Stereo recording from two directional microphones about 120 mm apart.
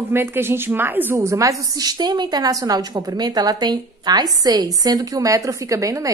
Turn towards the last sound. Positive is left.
turn(degrees=-25)  # may be behind; listen again after turning